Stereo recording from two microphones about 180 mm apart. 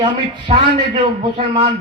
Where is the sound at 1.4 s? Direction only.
25° right (ahead or behind).